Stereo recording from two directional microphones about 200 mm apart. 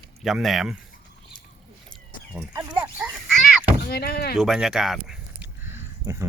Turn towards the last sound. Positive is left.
turn(degrees=-15)  # may be behind; listen again after turning